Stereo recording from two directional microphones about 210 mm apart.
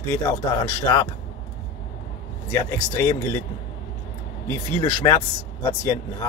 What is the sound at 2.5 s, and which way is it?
Speech, 15° left (ahead or behind).